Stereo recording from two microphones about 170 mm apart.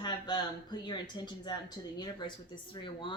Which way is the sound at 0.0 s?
25° left (ahead or behind).